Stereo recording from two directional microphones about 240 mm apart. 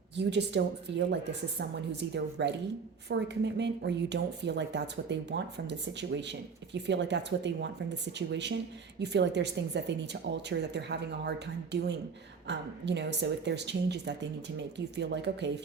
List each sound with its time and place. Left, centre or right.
0.2 s speech: right